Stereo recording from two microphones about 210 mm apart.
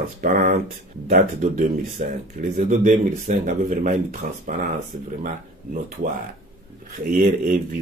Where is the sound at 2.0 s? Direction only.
45° right (ahead or behind).